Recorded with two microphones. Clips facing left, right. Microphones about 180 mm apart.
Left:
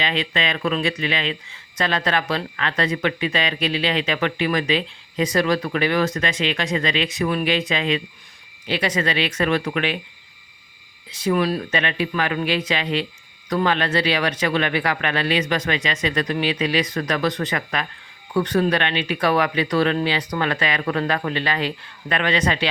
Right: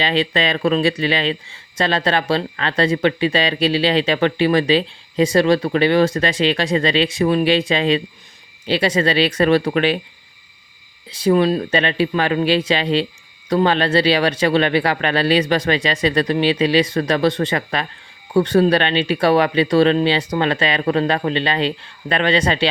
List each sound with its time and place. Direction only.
0.0 s speech: 35° right (ahead or behind)
11.1 s speech: 30° right (ahead or behind)